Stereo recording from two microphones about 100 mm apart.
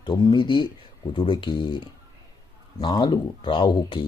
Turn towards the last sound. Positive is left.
turn(degrees=50)  # may be behind; listen again after turning